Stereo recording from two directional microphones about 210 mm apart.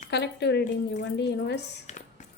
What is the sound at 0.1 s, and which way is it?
Speech, 55° left (ahead or behind).